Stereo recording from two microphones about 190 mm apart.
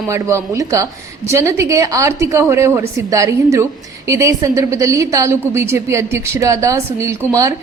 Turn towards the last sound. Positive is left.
turn(degrees=-15)  # may be behind; listen again after turning